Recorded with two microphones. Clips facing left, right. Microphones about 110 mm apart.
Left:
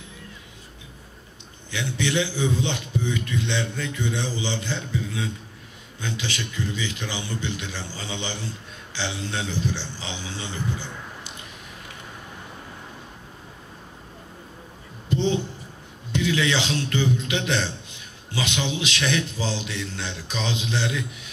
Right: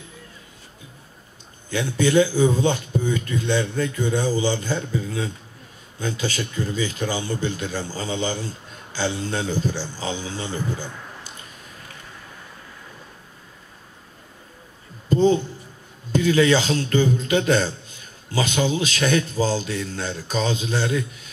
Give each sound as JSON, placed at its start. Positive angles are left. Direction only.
{"t": 1.7, "sound": "speech", "side_deg": -45}
{"t": 15.0, "sound": "a sound", "side_deg": -45}
{"t": 16.1, "sound": "speech", "side_deg": -40}